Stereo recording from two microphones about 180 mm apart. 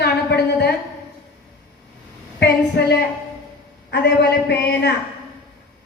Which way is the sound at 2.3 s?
65° left (ahead or behind).